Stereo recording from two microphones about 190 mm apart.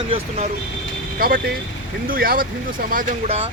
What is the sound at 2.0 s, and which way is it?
Speech, 50° right (ahead or behind).